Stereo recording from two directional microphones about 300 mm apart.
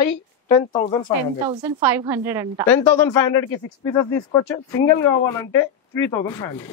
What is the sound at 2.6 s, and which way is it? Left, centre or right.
Speech, centre.